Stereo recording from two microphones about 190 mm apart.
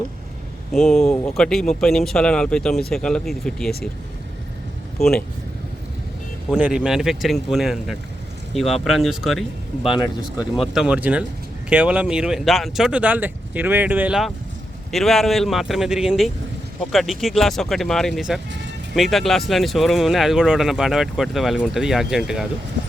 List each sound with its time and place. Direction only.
0.7 s speech: centre (ahead or behind)
4.9 s speech: centre (ahead or behind)
6.5 s speech: 5° right (ahead or behind)
9.9 s speech: 20° left (ahead or behind)
10.6 s speech: 5° right (ahead or behind)